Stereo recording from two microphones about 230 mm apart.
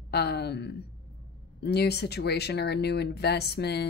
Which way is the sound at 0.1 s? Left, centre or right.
Left.